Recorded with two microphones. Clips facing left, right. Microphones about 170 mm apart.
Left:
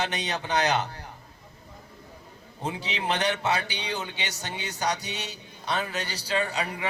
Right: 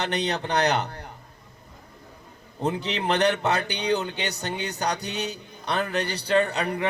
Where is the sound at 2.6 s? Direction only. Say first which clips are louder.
Right 4 dB; 60° right (ahead or behind).